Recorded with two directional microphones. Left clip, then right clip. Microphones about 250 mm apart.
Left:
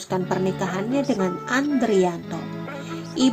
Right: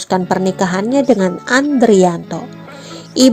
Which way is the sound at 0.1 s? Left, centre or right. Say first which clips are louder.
Right 9 dB; right.